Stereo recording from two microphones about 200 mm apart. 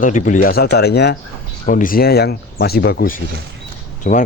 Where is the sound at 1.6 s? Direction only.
45° left (ahead or behind).